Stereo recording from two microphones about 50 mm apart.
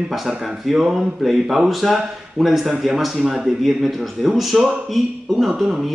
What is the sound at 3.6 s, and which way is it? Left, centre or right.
A man's voice, centre.